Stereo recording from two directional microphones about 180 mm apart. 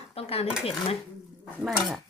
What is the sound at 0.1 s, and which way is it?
Dishes, 35° left (ahead or behind).